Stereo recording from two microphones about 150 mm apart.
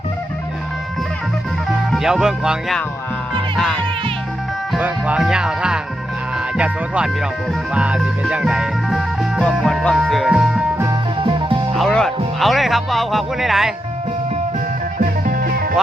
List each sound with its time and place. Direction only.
1.9 s speech: 5° right (ahead or behind)
4.8 s music: 10° right (ahead or behind)
6.3 s speech: 5° right (ahead or behind)
7.7 s music: 5° right (ahead or behind)
11.2 s music: 35° right (ahead or behind)
11.7 s music: 5° left (ahead or behind)
14.9 s music: 60° right (ahead or behind); by 15.7 s 85° right